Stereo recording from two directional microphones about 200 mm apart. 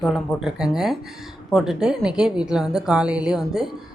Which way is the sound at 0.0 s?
Centre (ahead or behind).